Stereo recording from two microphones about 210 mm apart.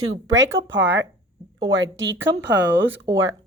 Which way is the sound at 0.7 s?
55° right (ahead or behind).